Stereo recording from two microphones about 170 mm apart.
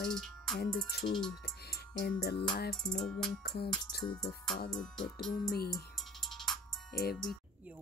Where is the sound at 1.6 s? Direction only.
70° left (ahead or behind).